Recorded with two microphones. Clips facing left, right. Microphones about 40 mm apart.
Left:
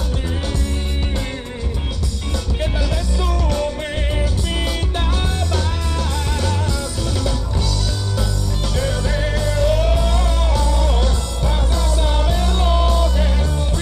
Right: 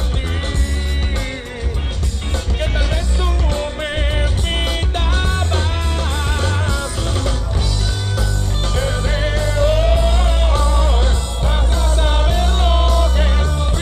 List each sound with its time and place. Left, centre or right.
3.2 s music: right
8.7 s music: right